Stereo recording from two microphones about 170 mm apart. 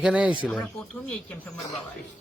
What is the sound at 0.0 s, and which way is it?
Speech, 5° right (ahead or behind).